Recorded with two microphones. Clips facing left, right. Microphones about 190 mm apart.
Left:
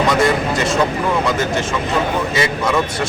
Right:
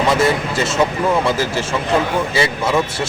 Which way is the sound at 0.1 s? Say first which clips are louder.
Left 1 dB; 25° right (ahead or behind).